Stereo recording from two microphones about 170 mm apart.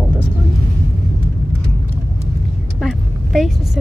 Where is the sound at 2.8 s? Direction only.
Centre (ahead or behind).